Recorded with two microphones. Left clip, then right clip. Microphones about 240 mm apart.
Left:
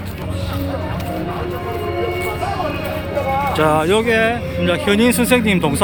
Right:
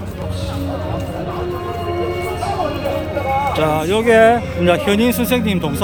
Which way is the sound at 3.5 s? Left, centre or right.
Centre.